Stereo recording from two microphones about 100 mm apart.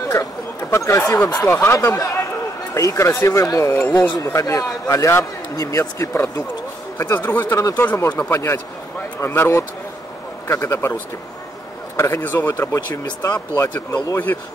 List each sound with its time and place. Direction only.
0.1 s a sound: 30° left (ahead or behind)
1.1 s a man's voice: 35° left (ahead or behind)
7.0 s speech: 20° left (ahead or behind)
12.0 s speech: 20° left (ahead or behind)